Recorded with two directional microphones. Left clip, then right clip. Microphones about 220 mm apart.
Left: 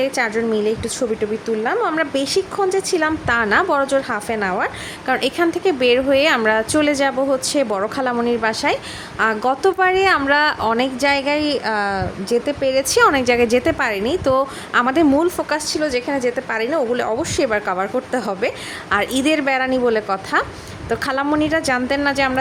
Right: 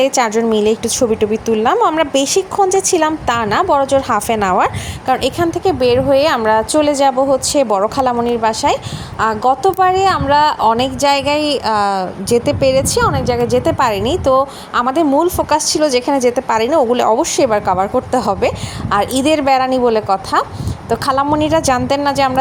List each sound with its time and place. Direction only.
0.0 s a woman's voice: 15° right (ahead or behind)
4.1 s a woman's voice: 15° right (ahead or behind)
5.0 s a woman's voice: 5° right (ahead or behind)
12.9 s a woman's voice: 10° left (ahead or behind)
13.8 s a woman's voice: 10° right (ahead or behind)
14.3 s a woman's voice: centre (ahead or behind)